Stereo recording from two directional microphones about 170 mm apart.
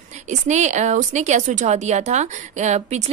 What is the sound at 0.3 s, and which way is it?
Speech, 45° right (ahead or behind).